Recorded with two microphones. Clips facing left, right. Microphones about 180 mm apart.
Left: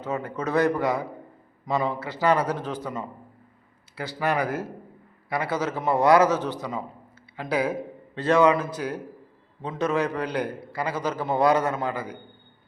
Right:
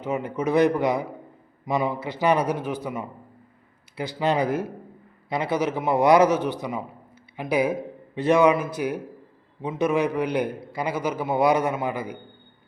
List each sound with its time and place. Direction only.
0.0 s a man's voice: 15° right (ahead or behind)